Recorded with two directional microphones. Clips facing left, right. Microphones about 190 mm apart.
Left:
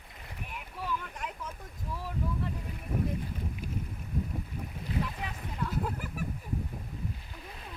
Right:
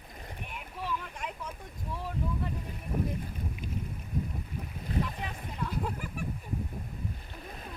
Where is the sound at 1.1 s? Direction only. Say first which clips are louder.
Right 1 dB; centre (ahead or behind).